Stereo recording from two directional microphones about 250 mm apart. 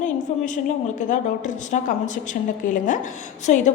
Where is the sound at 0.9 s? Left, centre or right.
Left.